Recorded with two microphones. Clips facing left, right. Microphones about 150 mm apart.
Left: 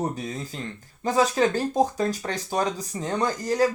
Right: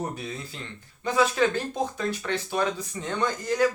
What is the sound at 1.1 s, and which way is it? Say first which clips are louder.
Speech: left 2 dB; 40° left (ahead or behind).